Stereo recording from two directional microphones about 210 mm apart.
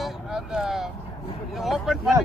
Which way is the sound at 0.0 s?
Centre (ahead or behind).